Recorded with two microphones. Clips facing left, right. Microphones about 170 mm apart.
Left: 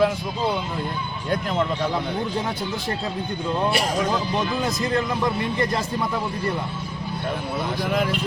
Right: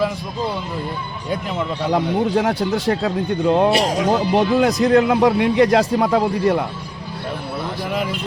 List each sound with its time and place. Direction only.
1.9 s speech: 80° right
7.9 s speech: centre (ahead or behind)